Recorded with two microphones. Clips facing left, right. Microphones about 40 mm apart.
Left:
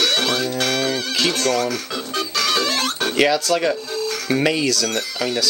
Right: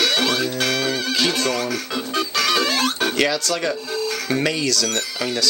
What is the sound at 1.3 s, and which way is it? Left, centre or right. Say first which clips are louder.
Music: left 2 dB; right.